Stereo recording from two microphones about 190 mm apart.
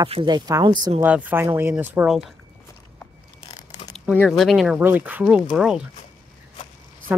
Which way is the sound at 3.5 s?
35° left (ahead or behind).